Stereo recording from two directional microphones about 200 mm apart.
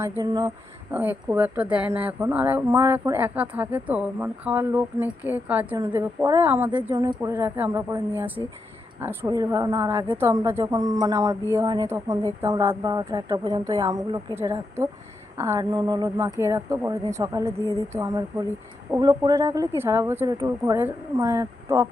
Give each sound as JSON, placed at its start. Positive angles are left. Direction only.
{"t": 0.0, "sound": "speech", "side_deg": -15}